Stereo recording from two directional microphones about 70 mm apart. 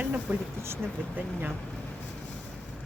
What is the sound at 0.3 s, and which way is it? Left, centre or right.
Speech, right.